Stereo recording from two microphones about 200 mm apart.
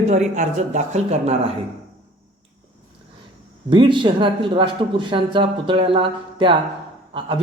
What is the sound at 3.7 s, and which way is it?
A man's voice, 25° right (ahead or behind).